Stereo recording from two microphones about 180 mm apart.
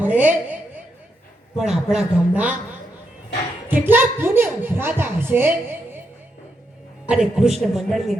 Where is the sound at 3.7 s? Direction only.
10° right (ahead or behind).